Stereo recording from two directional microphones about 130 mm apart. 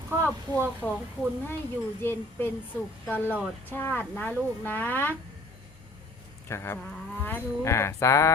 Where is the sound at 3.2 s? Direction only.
15° right (ahead or behind).